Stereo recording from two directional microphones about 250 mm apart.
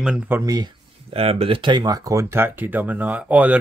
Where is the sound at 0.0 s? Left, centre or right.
Centre.